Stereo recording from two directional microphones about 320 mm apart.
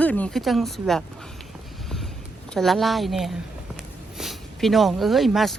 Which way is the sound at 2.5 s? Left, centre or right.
Centre.